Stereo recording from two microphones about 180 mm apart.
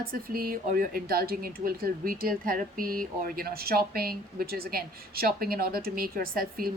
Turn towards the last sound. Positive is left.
turn(degrees=-55)  # may be behind; listen again after turning